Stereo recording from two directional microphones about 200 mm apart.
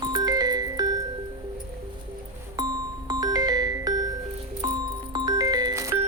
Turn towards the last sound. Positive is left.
turn(degrees=-15)  # may be behind; listen again after turning